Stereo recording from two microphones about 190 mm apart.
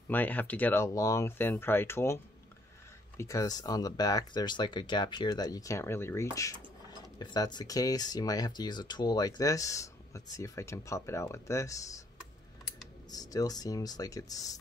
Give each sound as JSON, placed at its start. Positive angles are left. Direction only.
{"t": 0.1, "sound": "speech", "side_deg": 10}
{"t": 3.2, "sound": "speech", "side_deg": 15}
{"t": 13.1, "sound": "speech", "side_deg": 20}